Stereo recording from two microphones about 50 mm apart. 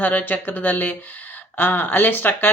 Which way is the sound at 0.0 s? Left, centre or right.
Left.